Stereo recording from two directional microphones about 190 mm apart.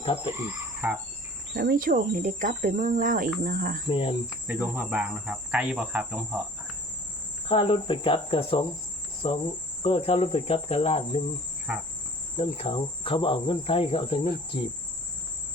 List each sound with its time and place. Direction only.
0.3 s cricket: 10° right (ahead or behind)
1.5 s cricket: 50° right (ahead or behind)
3.8 s cricket: 30° left (ahead or behind)
4.4 s cricket: 10° right (ahead or behind)
7.4 s cricket: 30° left (ahead or behind)
12.4 s cricket: 30° left (ahead or behind)